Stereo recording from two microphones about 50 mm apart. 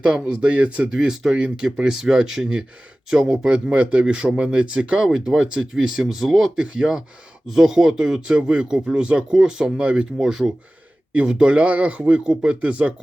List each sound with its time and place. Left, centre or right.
0.0 s speech: right
5.0 s speech: centre
6.6 s speech: centre